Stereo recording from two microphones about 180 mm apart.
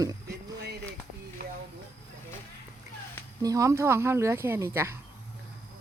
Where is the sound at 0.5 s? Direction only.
65° right (ahead or behind).